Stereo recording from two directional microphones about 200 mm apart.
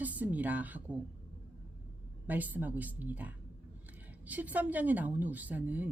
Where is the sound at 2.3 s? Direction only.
10° right (ahead or behind).